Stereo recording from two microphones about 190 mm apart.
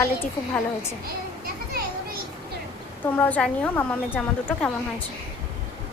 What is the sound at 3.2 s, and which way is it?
Speech, 10° left (ahead or behind).